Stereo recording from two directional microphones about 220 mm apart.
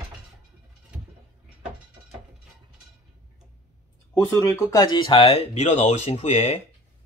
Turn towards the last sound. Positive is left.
turn(degrees=30)  # may be behind; listen again after turning